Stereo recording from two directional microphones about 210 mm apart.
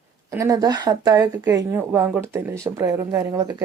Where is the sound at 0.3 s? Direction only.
15° right (ahead or behind).